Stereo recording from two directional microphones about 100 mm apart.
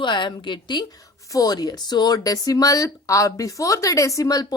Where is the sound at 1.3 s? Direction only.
40° left (ahead or behind).